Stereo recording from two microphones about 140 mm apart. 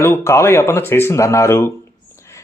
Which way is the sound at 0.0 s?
20° left (ahead or behind).